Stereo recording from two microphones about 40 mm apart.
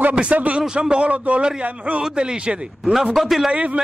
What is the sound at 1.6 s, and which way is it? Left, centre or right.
Speech, right.